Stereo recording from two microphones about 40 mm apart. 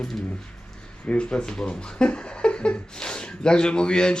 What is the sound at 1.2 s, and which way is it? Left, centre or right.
Speech, left.